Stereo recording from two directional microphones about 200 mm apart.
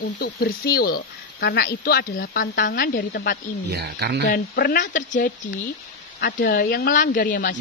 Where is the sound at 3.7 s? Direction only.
55° right (ahead or behind).